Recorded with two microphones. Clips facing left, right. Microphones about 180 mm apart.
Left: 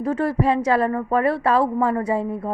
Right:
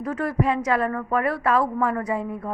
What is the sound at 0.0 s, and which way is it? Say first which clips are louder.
A woman's voice: left 3 dB; 30° left (ahead or behind).